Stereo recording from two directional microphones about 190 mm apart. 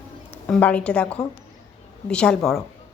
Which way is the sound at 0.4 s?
5° left (ahead or behind).